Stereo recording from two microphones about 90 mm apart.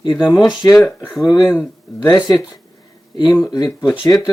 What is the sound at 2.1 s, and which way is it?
Speech, 45° left (ahead or behind).